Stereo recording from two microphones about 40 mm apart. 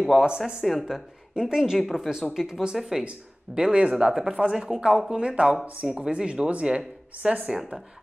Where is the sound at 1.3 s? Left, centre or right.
Centre.